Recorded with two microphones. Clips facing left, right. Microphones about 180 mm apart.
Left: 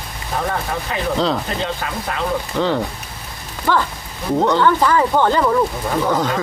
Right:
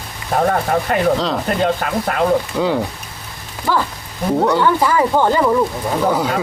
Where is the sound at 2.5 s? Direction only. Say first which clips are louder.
Right 1 dB; 10° right (ahead or behind).